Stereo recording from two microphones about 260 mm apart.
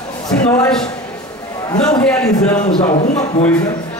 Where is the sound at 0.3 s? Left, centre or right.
Centre.